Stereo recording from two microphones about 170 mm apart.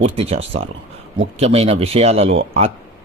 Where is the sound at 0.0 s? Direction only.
35° right (ahead or behind).